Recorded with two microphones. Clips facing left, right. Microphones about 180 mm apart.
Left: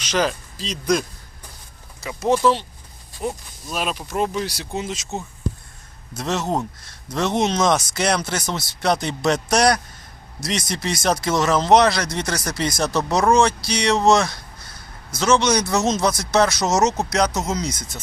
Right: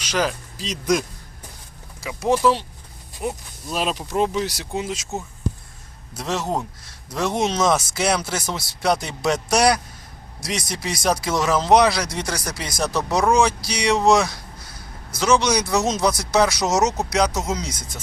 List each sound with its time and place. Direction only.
0.0 s speech: 10° right (ahead or behind)
2.0 s speech: 5° right (ahead or behind)
3.7 s speech: 25° right (ahead or behind)
4.7 s speech: 5° right (ahead or behind)